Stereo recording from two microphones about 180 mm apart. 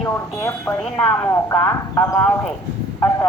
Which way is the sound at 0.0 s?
15° left (ahead or behind).